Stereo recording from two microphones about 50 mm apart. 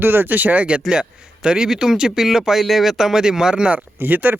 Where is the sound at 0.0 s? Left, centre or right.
Right.